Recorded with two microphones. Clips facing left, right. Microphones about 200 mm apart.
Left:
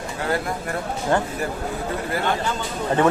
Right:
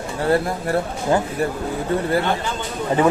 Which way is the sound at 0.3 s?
30° right (ahead or behind).